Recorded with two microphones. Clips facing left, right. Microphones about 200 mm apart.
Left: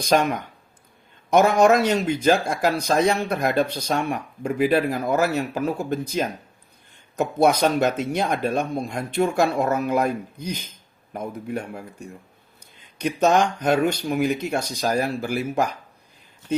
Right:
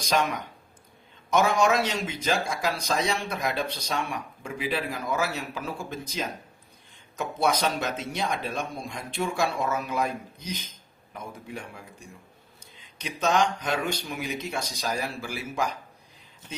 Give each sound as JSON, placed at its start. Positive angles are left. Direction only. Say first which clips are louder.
{"t": 0.0, "sound": "speech", "louder": "left 6 dB", "side_deg": 55}
{"t": 13.0, "sound": "speech", "louder": "left 6 dB", "side_deg": 55}